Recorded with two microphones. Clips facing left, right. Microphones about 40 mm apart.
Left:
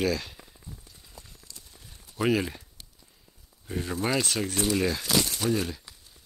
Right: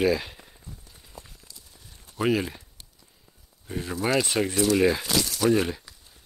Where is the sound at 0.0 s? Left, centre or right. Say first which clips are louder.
Right 4 dB; centre.